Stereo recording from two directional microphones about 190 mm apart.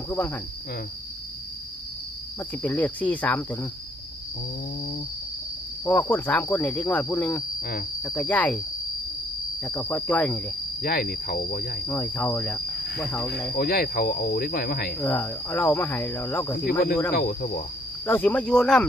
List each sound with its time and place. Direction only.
0.1 s speech: 10° left (ahead or behind)
2.5 s speech: 10° left (ahead or behind)
5.9 s speech: 10° left (ahead or behind)
9.7 s speech: 15° left (ahead or behind)
10.8 s speech: 50° left (ahead or behind)
11.9 s speech: 10° left (ahead or behind)
13.6 s speech: 50° left (ahead or behind)
15.0 s speech: 10° left (ahead or behind)
17.1 s speech: 50° left (ahead or behind)
18.0 s speech: 10° left (ahead or behind)